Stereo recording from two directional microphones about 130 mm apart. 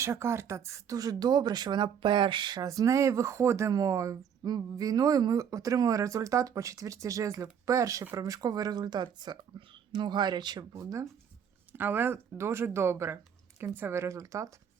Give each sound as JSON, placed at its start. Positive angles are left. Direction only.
{"t": 0.0, "sound": "speech", "side_deg": -20}